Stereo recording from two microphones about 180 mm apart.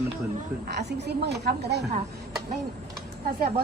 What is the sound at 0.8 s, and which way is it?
Speech, 65° right (ahead or behind).